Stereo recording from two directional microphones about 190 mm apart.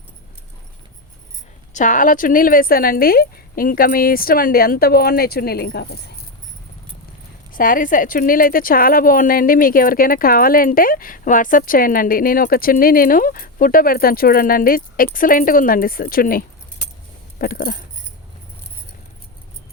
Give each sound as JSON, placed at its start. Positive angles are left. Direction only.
{"t": 1.7, "sound": "a woman's voice", "side_deg": 40}
{"t": 7.5, "sound": "a woman's voice", "side_deg": 45}